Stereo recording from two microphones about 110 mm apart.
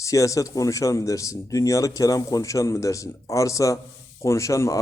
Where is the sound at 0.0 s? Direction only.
30° left (ahead or behind).